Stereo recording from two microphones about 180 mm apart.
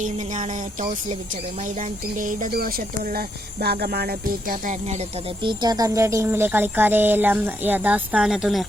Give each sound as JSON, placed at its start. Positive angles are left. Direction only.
{"t": 0.0, "sound": "speech", "side_deg": -40}